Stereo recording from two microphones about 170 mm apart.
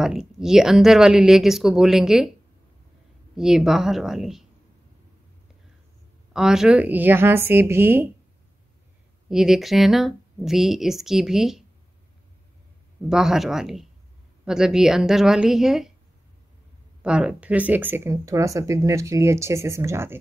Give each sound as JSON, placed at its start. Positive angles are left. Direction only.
{"t": 0.0, "sound": "speech", "side_deg": -5}
{"t": 3.3, "sound": "speech", "side_deg": -5}
{"t": 6.3, "sound": "speech", "side_deg": -5}
{"t": 9.3, "sound": "speech", "side_deg": 0}
{"t": 13.1, "sound": "speech", "side_deg": -5}
{"t": 17.0, "sound": "speech", "side_deg": -5}